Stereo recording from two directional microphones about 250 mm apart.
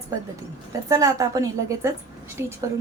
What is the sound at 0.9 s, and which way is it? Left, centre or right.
A woman's voice, centre.